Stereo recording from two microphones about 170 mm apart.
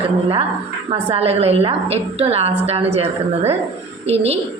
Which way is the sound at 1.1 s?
35° right (ahead or behind).